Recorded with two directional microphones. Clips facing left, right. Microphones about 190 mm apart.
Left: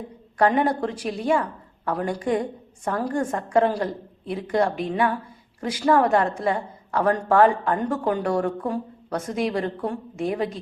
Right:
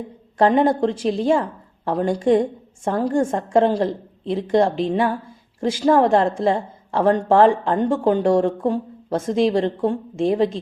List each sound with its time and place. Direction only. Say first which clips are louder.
0.3 s a woman's voice: right 4 dB; 25° right (ahead or behind)